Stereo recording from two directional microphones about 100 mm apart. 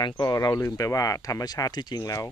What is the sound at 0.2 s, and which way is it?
Speech, 40° left (ahead or behind).